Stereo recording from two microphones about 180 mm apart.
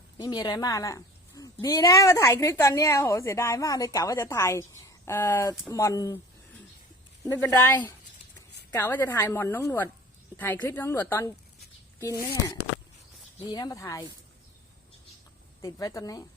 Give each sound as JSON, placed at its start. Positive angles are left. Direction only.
{"t": 0.2, "sound": "a woman's voice", "side_deg": 20}
{"t": 7.3, "sound": "a woman's voice", "side_deg": 15}
{"t": 13.5, "sound": "a woman's voice", "side_deg": 20}
{"t": 15.6, "sound": "a woman's voice", "side_deg": 20}